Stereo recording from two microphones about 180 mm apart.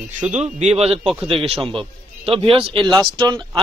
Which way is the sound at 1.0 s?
5° right (ahead or behind).